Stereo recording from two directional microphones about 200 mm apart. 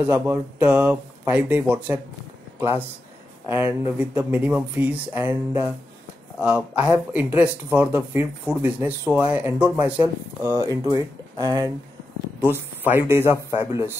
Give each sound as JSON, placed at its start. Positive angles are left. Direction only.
{"t": 0.0, "sound": "speech", "side_deg": -10}
{"t": 3.4, "sound": "speech", "side_deg": -10}